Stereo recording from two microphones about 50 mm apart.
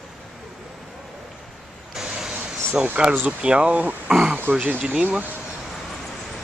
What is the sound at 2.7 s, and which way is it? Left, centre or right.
Speech, centre.